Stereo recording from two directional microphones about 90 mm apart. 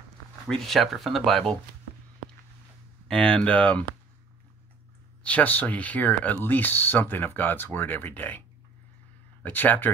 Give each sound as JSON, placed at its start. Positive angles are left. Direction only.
{"t": 0.5, "sound": "speech", "side_deg": 5}
{"t": 3.1, "sound": "speech", "side_deg": 10}
{"t": 5.2, "sound": "speech", "side_deg": 15}